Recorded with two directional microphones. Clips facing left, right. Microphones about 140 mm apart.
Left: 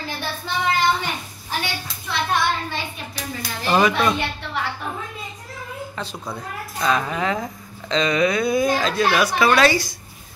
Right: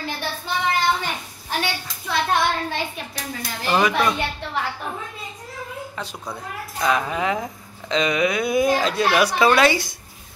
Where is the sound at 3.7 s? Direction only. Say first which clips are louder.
Left 1 dB; 5° right (ahead or behind).